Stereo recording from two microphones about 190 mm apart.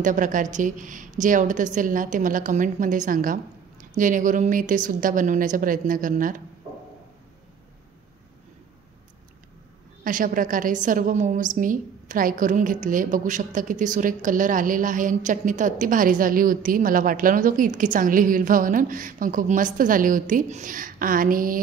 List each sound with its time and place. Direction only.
0.0 s a woman's voice: 40° right (ahead or behind)
10.0 s a woman's voice: 45° right (ahead or behind)